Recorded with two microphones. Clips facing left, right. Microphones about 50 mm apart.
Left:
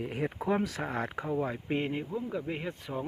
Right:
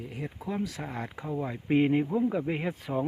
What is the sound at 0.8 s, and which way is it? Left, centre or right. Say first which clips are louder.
Speech: left 3 dB; left.